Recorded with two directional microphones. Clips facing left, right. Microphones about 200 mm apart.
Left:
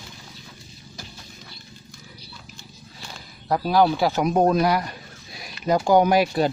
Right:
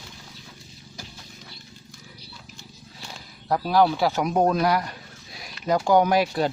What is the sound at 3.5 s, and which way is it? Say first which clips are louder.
Speech: left 1 dB; 5° left (ahead or behind).